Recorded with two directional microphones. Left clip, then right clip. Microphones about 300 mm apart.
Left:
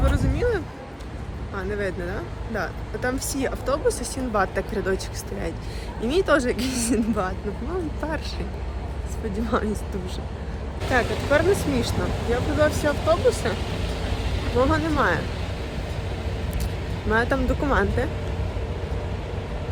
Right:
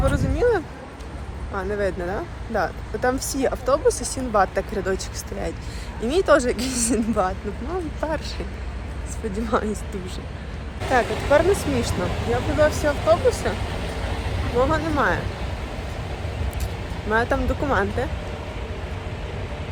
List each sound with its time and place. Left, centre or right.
0.0 s a sound: centre
1.5 s speech: centre
6.0 s speech: centre
9.3 s speech: centre
10.9 s speech: centre
12.5 s speech: centre
13.6 s vehicle: right
14.6 s speech: centre
17.1 s speech: centre